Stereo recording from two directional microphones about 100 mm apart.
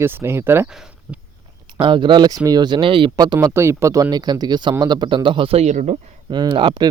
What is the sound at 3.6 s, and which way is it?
A man's voice, 30° right (ahead or behind).